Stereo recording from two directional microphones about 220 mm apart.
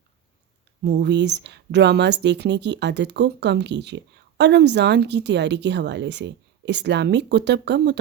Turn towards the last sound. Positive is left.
turn(degrees=-50)  # may be behind; listen again after turning